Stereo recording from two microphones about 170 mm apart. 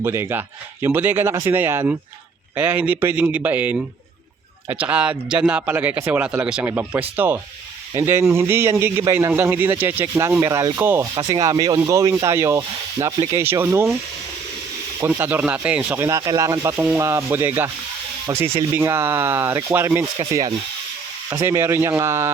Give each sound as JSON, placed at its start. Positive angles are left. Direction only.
{"t": 0.0, "sound": "speech", "side_deg": -15}
{"t": 11.1, "sound": "speech", "side_deg": -20}
{"t": 15.0, "sound": "speech", "side_deg": -10}
{"t": 16.0, "sound": "speech", "side_deg": -20}
{"t": 21.2, "sound": "speech", "side_deg": -15}